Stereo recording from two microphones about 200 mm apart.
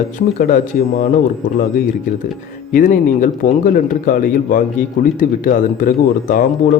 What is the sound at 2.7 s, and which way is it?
Speech, 40° left (ahead or behind).